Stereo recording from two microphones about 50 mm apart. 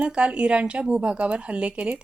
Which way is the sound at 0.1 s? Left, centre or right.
Right.